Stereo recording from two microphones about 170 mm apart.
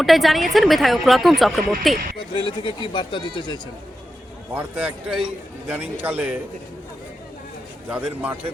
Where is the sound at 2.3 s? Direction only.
30° left (ahead or behind).